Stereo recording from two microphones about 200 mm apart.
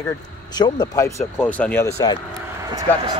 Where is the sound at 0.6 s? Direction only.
20° left (ahead or behind).